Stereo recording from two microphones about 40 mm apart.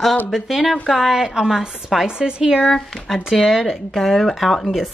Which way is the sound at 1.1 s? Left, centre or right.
Centre.